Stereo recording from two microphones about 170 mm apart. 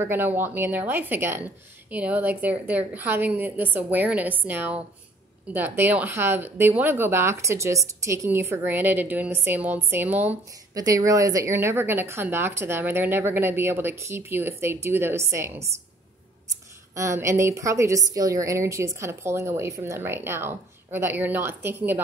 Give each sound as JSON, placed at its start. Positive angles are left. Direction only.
{"t": 0.0, "sound": "a woman's voice", "side_deg": -10}